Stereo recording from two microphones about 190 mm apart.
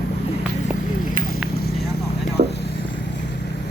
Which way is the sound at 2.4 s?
40° right (ahead or behind).